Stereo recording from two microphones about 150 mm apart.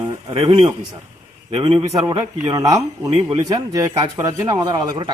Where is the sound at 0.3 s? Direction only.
35° right (ahead or behind).